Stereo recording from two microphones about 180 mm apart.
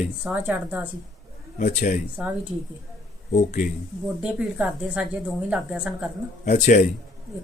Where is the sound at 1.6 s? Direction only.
40° left (ahead or behind).